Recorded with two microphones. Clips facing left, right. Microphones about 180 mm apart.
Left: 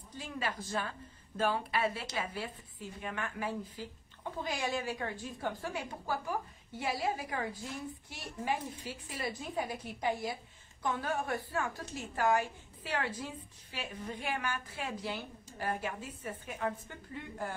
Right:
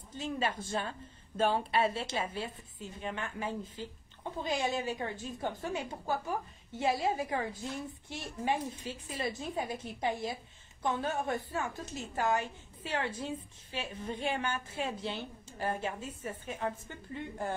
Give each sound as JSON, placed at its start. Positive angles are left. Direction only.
{"t": 0.1, "sound": "a woman's voice", "side_deg": -25}